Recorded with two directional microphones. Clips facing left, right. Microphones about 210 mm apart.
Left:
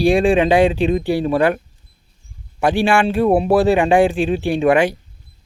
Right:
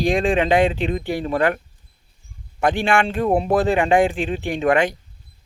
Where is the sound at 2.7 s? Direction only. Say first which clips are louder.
Left 7 dB; 10° left (ahead or behind).